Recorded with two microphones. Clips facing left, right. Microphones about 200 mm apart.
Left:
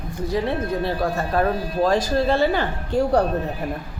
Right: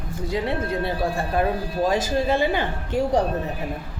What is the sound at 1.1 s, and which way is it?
A woman's voice, 15° right (ahead or behind).